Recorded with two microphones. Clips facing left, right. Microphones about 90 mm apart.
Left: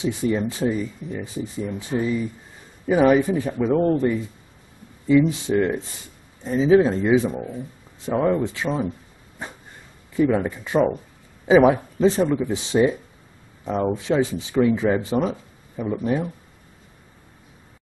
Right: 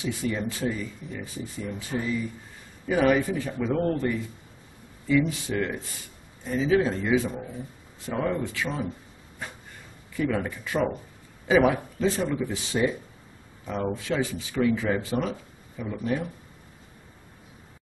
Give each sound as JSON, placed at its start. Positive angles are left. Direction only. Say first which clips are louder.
{"t": 0.0, "sound": "speech", "louder": "left 6 dB", "side_deg": 20}
{"t": 10.1, "sound": "speech", "louder": "left 7 dB", "side_deg": 20}